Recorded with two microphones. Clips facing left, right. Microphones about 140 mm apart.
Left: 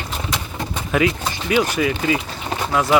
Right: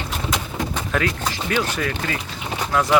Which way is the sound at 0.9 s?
10° left (ahead or behind).